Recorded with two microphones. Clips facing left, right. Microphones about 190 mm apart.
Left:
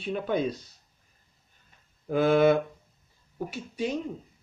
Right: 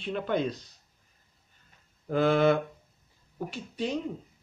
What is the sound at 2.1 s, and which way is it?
Speech, 10° left (ahead or behind).